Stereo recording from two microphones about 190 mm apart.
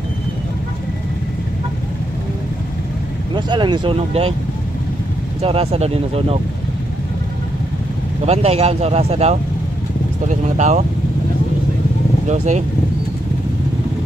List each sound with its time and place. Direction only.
3.3 s speech: 25° right (ahead or behind)
5.4 s speech: 30° right (ahead or behind)
8.3 s speech: 35° right (ahead or behind)
12.3 s speech: 40° right (ahead or behind)